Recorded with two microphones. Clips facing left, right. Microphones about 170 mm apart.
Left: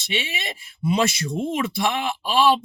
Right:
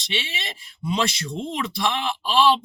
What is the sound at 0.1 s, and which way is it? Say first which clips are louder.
Speech: left 3 dB; 50° left (ahead or behind).